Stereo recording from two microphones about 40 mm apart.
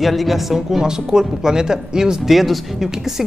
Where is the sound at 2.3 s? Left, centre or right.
Centre.